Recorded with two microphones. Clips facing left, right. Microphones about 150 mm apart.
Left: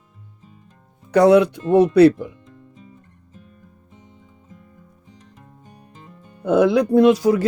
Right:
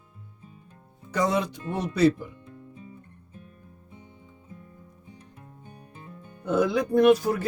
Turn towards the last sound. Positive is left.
turn(degrees=90)